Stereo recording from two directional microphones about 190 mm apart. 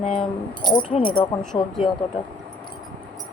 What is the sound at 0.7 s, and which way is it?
Speech, 25° left (ahead or behind).